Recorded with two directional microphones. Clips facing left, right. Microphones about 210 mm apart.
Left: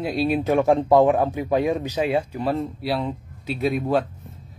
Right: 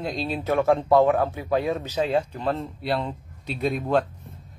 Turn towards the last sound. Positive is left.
turn(degrees=5)  # may be behind; listen again after turning